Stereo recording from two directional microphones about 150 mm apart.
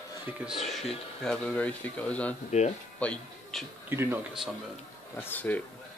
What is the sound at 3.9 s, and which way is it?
Speech, 15° right (ahead or behind).